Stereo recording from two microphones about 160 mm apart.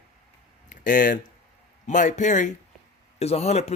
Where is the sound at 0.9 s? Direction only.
55° left (ahead or behind).